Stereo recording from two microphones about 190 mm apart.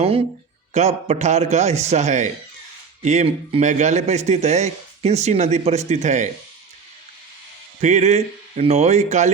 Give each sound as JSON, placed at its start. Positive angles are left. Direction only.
{"t": 0.7, "sound": "a man's voice", "side_deg": -35}
{"t": 7.8, "sound": "a man's voice", "side_deg": -35}